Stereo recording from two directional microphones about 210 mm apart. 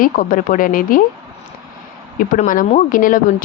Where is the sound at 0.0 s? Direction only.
40° left (ahead or behind).